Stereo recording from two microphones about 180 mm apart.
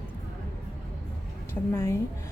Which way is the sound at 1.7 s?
15° left (ahead or behind).